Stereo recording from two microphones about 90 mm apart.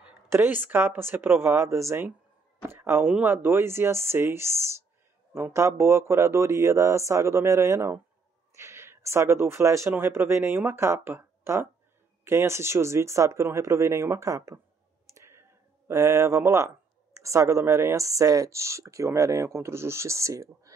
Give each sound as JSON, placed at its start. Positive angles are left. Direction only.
{"t": 0.3, "sound": "speech", "side_deg": -25}
{"t": 15.0, "sound": "clicking", "side_deg": -30}
{"t": 15.9, "sound": "speech", "side_deg": -35}